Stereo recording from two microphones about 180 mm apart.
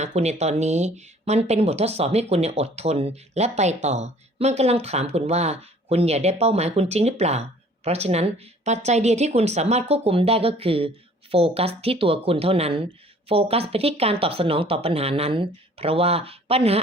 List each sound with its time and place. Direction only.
0.0 s speech: 40° right (ahead or behind)